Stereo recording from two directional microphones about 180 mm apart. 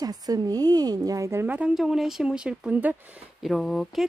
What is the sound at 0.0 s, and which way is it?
A woman's voice, 20° right (ahead or behind).